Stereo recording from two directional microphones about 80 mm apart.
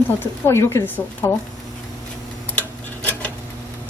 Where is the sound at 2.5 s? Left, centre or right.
Left.